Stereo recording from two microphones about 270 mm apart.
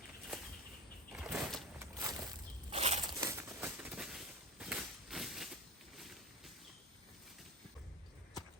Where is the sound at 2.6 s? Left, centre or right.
Right.